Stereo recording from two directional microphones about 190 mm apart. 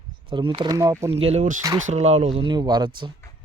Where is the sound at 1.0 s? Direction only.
30° right (ahead or behind).